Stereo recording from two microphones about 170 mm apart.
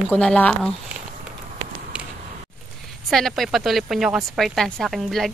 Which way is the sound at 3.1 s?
Centre (ahead or behind).